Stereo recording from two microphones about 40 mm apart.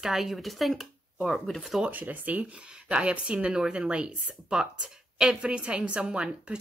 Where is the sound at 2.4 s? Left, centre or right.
Right.